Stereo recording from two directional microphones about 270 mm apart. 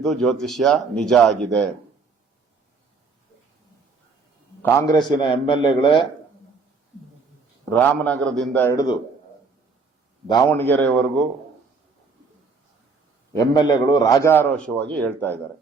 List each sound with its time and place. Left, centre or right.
0.0 s a man's voice: centre
4.6 s a man's voice: centre
7.6 s a man's voice: centre
10.2 s a man's voice: centre
13.3 s a man's voice: centre